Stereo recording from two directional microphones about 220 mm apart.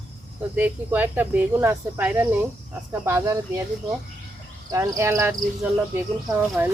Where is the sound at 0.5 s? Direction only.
10° right (ahead or behind).